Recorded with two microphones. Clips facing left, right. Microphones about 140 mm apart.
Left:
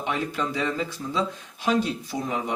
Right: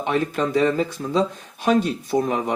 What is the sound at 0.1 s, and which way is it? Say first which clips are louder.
Speech: right 7 dB; 50° right (ahead or behind).